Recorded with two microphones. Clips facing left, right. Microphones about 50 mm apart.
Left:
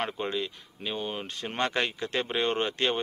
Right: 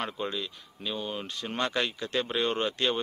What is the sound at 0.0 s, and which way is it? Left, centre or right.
A man's voice, left.